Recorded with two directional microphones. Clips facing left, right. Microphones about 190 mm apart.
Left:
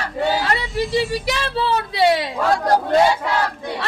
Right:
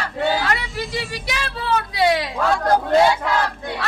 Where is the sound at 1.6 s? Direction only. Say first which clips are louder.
Left 1 dB; 30° left (ahead or behind).